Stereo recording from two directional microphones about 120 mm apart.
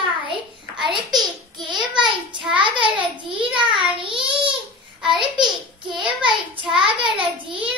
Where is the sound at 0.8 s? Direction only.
40° right (ahead or behind).